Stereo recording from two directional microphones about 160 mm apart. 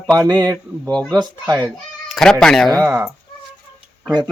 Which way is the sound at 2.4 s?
5° left (ahead or behind).